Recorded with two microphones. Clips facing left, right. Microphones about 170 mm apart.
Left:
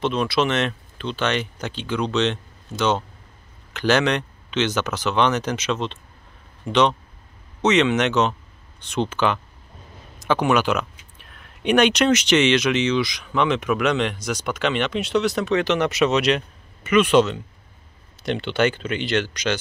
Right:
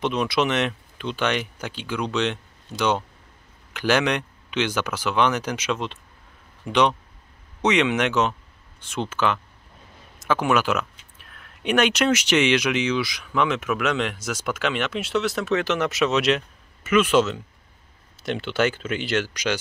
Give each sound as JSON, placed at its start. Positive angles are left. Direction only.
{"t": 0.0, "sound": "speech", "side_deg": -15}